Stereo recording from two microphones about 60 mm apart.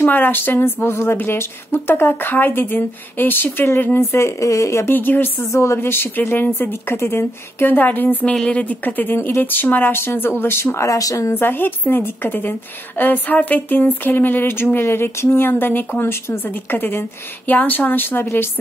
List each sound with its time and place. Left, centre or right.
0.0 s a woman's voice: left
4.4 s speech: left
4.8 s a woman's voice: left
5.4 s a woman's voice: left
10.9 s speech: left
11.3 s a woman's voice: left